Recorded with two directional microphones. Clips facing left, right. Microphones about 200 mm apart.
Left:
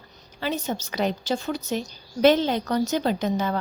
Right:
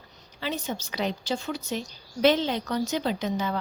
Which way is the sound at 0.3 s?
45° left (ahead or behind).